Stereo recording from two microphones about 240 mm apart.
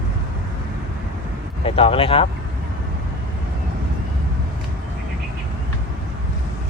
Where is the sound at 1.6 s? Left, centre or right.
Left.